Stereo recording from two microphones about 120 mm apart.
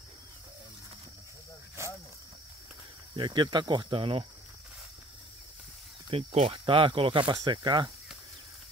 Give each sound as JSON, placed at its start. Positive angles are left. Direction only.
{"t": 3.2, "sound": "speech", "side_deg": -40}
{"t": 6.0, "sound": "speech", "side_deg": -55}